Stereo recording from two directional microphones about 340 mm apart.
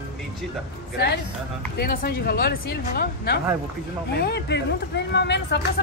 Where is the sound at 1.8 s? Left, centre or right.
Left.